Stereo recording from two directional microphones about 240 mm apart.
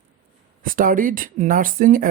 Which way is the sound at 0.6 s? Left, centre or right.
Right.